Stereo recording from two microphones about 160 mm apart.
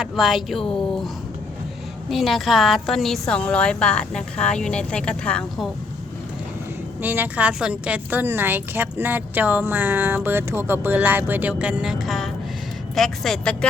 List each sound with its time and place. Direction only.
0.0 s a woman's voice: centre (ahead or behind)
7.0 s a woman's voice: 10° right (ahead or behind); by 13.7 s 5° left (ahead or behind)